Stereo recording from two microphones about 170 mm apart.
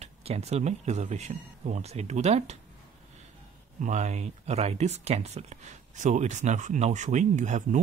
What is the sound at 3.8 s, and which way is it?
Speech, 45° right (ahead or behind).